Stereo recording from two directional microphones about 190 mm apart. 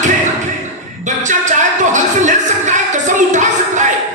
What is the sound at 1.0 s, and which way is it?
Music, 40° right (ahead or behind).